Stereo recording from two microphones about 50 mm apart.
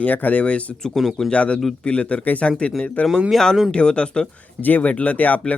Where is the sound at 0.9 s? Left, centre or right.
Centre.